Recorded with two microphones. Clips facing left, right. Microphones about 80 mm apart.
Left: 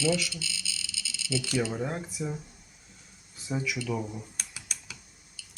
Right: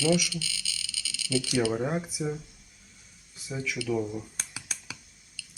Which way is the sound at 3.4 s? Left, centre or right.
Left.